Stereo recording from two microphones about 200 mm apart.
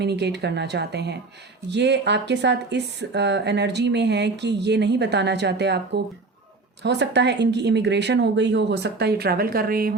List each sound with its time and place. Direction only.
0.0 s speech: 55° right (ahead or behind)